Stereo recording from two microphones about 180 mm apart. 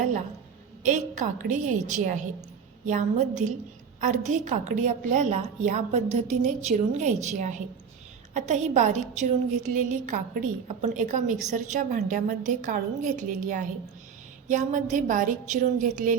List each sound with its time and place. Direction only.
0.8 s a woman's voice: 45° right (ahead or behind)